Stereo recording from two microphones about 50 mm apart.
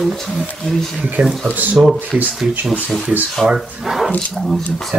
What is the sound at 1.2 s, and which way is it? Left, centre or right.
Speech, right.